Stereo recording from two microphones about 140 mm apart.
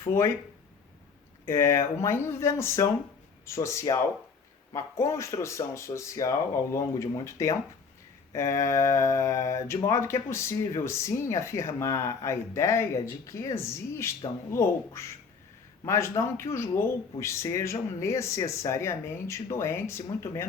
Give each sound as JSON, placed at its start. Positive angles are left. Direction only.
{"t": 0.0, "sound": "speech", "side_deg": 20}
{"t": 1.5, "sound": "speech", "side_deg": 20}